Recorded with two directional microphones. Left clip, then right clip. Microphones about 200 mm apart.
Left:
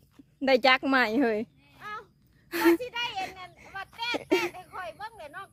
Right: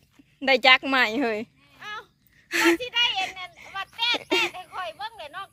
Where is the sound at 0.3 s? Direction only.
25° left (ahead or behind).